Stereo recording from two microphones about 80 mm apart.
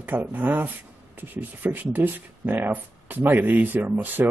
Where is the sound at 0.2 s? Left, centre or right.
Right.